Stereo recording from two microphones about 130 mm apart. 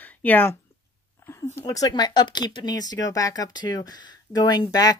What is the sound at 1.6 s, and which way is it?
Speech, 25° left (ahead or behind).